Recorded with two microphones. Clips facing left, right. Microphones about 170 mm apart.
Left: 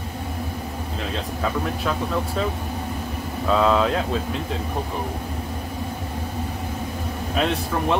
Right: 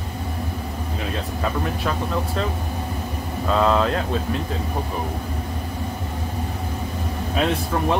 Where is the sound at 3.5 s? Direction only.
Centre (ahead or behind).